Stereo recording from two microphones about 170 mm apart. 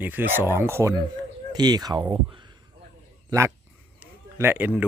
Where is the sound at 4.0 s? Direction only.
15° right (ahead or behind).